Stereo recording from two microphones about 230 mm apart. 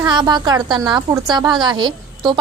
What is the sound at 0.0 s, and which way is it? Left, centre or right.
A woman's voice, centre.